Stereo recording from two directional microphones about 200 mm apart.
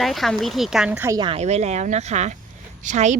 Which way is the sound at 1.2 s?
30° right (ahead or behind).